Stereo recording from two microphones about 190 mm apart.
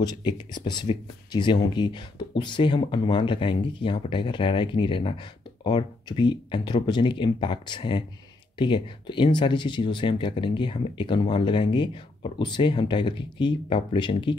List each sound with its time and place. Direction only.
0.0 s speech: 20° left (ahead or behind)